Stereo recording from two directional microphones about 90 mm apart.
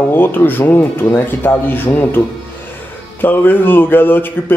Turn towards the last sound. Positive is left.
turn(degrees=20)  # may be behind; listen again after turning